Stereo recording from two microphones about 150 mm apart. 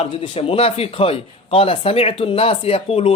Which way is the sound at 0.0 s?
40° left (ahead or behind).